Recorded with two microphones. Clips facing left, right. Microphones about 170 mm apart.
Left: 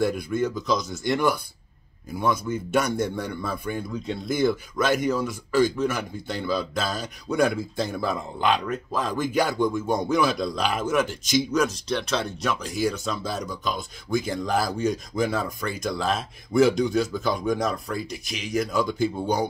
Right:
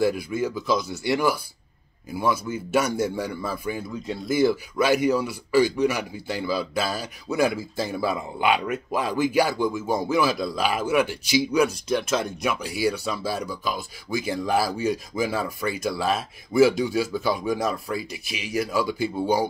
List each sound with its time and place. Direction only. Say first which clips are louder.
0.0 s speech: right 1 dB; 5° right (ahead or behind)